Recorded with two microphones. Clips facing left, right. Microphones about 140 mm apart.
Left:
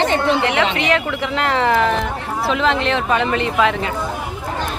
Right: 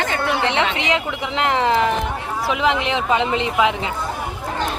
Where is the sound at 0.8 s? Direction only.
20° right (ahead or behind).